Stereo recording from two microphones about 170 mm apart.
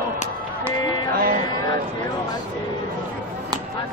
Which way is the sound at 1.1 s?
60° right (ahead or behind).